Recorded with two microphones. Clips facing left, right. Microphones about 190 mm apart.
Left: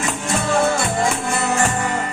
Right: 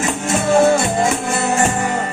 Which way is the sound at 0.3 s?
20° right (ahead or behind).